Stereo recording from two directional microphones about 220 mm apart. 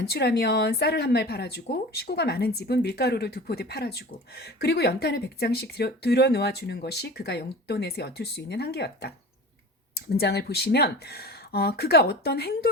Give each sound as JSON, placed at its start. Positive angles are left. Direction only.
{"t": 0.0, "sound": "speech", "side_deg": 45}
{"t": 10.2, "sound": "speech", "side_deg": 45}